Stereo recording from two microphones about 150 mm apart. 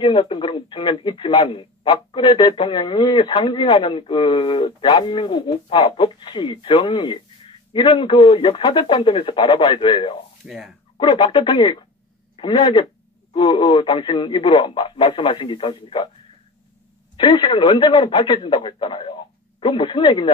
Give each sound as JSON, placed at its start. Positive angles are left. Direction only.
{"t": 0.0, "sound": "speech", "side_deg": 30}
{"t": 10.4, "sound": "speech", "side_deg": 0}
{"t": 11.0, "sound": "speech", "side_deg": 30}
{"t": 13.3, "sound": "speech", "side_deg": 30}
{"t": 17.2, "sound": "speech", "side_deg": 35}